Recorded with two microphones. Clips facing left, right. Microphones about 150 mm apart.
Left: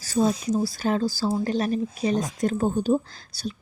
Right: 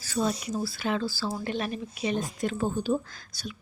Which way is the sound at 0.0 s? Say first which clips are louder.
Left 6 dB; 40° left (ahead or behind).